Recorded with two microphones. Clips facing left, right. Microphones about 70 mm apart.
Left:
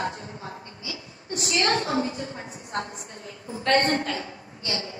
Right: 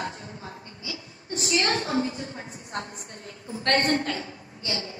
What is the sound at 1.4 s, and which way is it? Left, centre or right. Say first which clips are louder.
A woman's voice: left 1 dB; left.